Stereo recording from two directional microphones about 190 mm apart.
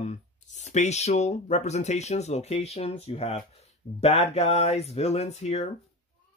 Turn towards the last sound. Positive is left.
turn(degrees=35)  # may be behind; listen again after turning